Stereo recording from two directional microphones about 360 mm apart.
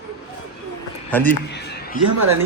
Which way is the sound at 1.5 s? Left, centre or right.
Left.